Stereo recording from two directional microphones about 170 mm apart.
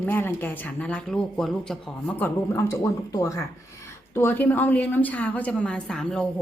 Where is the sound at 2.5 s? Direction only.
15° left (ahead or behind).